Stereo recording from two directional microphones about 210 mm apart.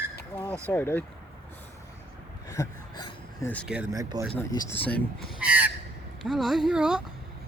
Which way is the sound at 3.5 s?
5° left (ahead or behind).